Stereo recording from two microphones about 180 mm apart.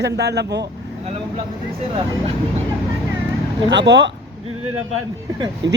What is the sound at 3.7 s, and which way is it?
Speech, 75° right (ahead or behind).